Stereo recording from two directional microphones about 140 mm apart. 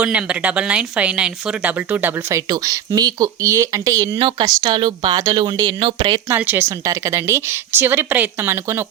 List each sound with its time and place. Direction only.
0.0 s speech: 10° right (ahead or behind); by 4.2 s 25° right (ahead or behind)
4.2 s speech: 35° right (ahead or behind)
6.2 s a woman's voice: 15° right (ahead or behind)